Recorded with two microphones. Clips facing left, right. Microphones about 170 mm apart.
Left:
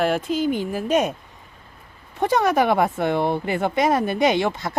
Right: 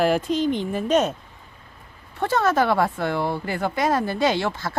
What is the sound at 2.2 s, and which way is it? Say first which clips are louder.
Speech: left 2 dB; 15° left (ahead or behind).